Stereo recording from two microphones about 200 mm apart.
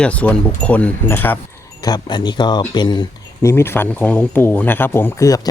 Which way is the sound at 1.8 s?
20° left (ahead or behind).